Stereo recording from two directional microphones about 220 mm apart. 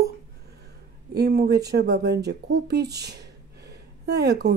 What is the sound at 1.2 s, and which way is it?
Speech, 45° right (ahead or behind).